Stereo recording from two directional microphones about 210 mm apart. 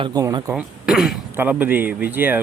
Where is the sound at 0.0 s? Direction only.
15° right (ahead or behind).